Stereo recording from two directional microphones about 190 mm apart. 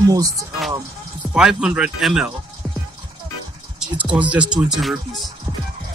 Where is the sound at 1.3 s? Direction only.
5° right (ahead or behind).